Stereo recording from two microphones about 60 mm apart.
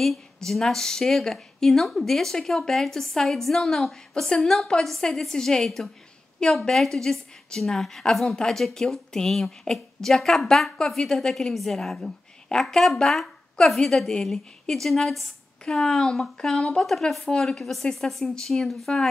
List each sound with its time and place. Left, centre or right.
0.0 s a woman's voice: centre